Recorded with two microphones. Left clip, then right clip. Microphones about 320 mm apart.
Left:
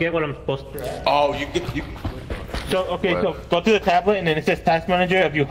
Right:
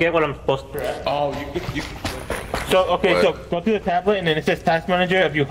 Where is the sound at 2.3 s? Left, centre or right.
Centre.